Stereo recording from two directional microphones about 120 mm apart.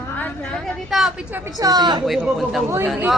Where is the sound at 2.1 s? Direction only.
5° right (ahead or behind).